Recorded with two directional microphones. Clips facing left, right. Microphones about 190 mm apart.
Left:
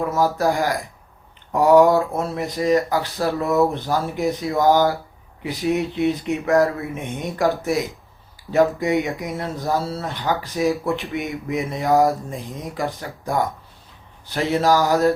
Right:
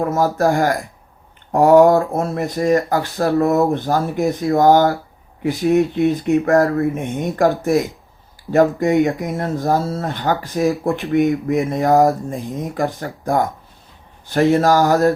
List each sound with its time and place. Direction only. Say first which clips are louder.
0.0 s speech: right 3 dB; 50° right (ahead or behind)